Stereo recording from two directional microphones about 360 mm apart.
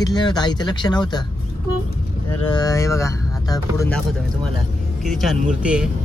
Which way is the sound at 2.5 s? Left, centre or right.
Centre.